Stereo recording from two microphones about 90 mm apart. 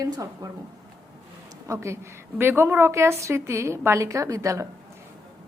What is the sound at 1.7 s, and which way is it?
A woman's voice, 30° right (ahead or behind).